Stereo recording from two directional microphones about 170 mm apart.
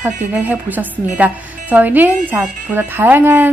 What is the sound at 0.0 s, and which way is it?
A woman's voice, 10° right (ahead or behind).